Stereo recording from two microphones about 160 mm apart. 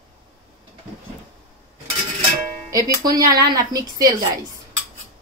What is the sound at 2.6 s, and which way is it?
A woman's voice, 20° right (ahead or behind).